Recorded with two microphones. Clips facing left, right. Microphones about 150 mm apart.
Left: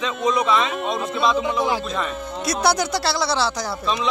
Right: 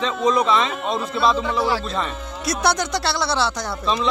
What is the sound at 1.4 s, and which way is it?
Speech, 20° left (ahead or behind).